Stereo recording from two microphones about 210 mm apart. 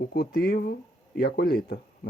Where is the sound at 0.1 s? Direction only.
45° left (ahead or behind).